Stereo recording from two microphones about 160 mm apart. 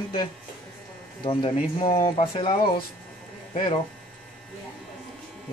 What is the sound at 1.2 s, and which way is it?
Speech, 30° left (ahead or behind).